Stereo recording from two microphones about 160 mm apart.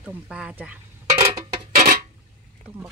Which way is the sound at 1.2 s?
20° right (ahead or behind).